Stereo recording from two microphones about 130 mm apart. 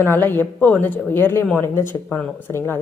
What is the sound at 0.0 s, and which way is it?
Speech, 15° left (ahead or behind).